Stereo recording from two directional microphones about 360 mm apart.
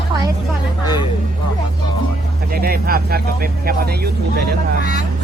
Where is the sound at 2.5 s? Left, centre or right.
Right.